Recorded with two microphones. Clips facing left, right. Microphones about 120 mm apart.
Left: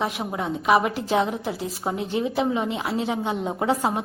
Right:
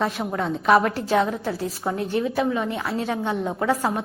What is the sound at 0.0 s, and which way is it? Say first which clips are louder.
A woman's voice: right 2 dB; 15° left (ahead or behind).